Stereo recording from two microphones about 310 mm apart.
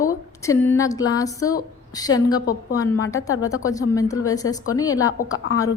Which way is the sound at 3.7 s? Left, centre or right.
Centre.